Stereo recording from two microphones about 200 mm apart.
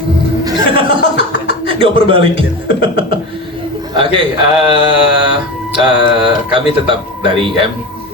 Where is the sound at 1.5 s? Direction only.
25° right (ahead or behind).